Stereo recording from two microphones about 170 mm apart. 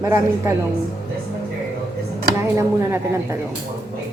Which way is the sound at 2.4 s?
15° right (ahead or behind).